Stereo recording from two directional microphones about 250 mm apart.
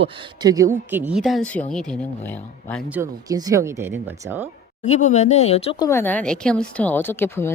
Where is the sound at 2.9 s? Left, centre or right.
Centre.